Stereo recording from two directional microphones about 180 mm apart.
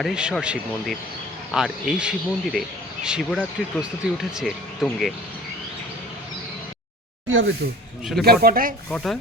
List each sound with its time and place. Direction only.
0.0 s speech: 5° right (ahead or behind)
7.3 s speech: 90° right
8.2 s speech: 60° right (ahead or behind)